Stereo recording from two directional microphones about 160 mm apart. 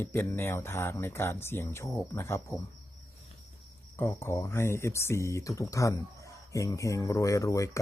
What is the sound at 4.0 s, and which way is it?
Speech, 15° left (ahead or behind).